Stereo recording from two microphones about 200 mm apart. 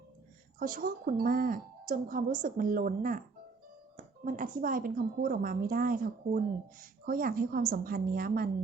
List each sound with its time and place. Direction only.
0.6 s a woman's voice: 45° right (ahead or behind)